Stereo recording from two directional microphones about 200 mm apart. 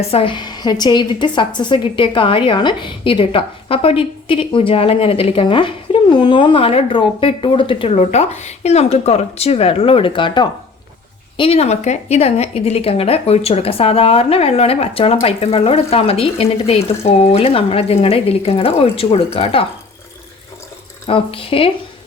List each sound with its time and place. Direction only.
0.1 s a woman's voice: 25° left (ahead or behind)
21.1 s a woman's voice: 25° left (ahead or behind)